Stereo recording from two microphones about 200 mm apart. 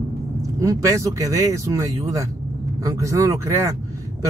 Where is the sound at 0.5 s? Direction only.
15° right (ahead or behind).